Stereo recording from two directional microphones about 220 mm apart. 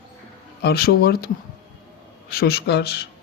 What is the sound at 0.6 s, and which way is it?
Speech, 45° left (ahead or behind).